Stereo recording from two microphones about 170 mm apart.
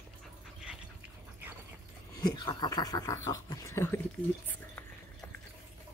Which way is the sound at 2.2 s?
25° left (ahead or behind).